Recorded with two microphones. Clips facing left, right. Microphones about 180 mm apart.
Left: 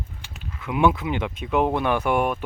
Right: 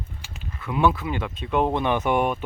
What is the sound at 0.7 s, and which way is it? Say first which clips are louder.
Speech: left 1 dB; 15° left (ahead or behind).